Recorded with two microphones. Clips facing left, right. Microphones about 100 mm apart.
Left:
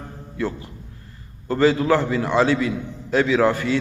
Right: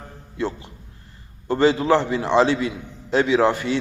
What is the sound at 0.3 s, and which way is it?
A man's voice, 25° right (ahead or behind).